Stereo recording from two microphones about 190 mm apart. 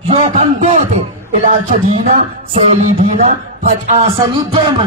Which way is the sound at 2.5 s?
30° right (ahead or behind).